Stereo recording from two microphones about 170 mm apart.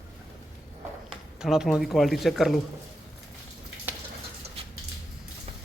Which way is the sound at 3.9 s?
15° right (ahead or behind).